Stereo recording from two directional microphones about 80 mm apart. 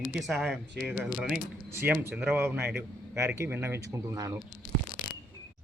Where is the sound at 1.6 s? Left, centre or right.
Right.